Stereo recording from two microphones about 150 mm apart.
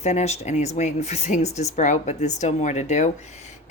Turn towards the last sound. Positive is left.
turn(degrees=50)  # may be behind; listen again after turning